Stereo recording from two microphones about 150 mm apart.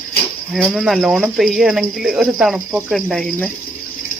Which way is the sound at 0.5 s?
Centre (ahead or behind).